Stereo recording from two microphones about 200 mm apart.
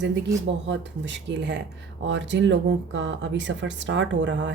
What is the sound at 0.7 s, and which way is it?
Speech, 65° right (ahead or behind).